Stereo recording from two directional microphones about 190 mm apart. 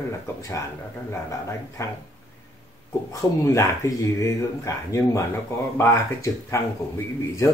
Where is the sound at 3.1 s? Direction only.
15° left (ahead or behind).